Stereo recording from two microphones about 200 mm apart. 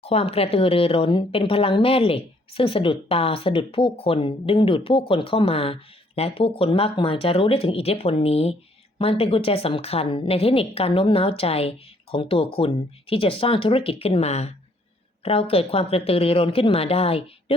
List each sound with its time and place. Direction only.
0.0 s speech: 30° left (ahead or behind)